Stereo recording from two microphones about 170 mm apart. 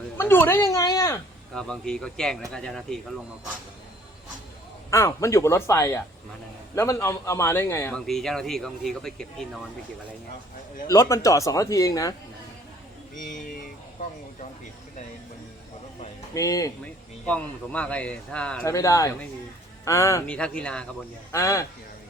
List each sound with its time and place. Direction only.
0.2 s speech: 15° left (ahead or behind)
1.5 s speech: 5° left (ahead or behind)
4.9 s a man's voice: 20° left (ahead or behind)
7.9 s speech: centre (ahead or behind)
10.8 s speech: 20° left (ahead or behind)
13.1 s speech: 50° left (ahead or behind)
16.3 s speech: 20° left (ahead or behind)
17.2 s a man's voice: 5° left (ahead or behind)
18.6 s speech: 20° left (ahead or behind)
20.2 s a man's voice: 5° left (ahead or behind)
21.3 s a man's voice: 20° left (ahead or behind)